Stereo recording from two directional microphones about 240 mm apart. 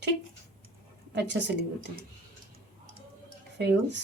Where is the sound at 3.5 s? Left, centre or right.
Right.